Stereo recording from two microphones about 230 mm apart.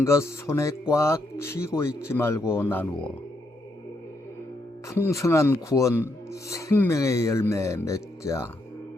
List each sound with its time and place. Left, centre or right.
0.0 s speech: centre
4.9 s speech: centre